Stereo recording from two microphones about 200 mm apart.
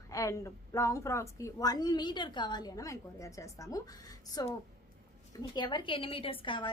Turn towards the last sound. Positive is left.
turn(degrees=25)  # may be behind; listen again after turning